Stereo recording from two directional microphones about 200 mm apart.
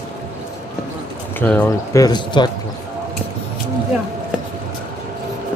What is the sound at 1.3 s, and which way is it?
Speech, 10° left (ahead or behind).